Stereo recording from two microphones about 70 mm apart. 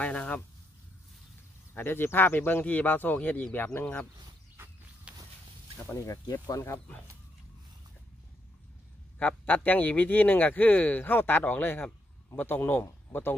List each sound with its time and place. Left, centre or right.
0.0 s speech: left
1.7 s speech: left
4.6 s a sound: right
5.1 s walk: centre
5.9 s speech: left
6.4 s speech: left
9.2 s a man's voice: left